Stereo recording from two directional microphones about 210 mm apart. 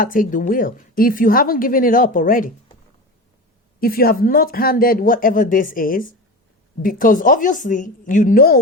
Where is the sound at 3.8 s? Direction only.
45° left (ahead or behind).